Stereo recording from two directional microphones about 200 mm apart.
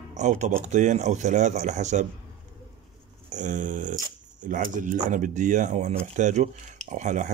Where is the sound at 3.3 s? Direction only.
40° right (ahead or behind).